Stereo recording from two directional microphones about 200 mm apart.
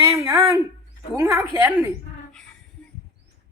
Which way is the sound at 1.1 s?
15° right (ahead or behind).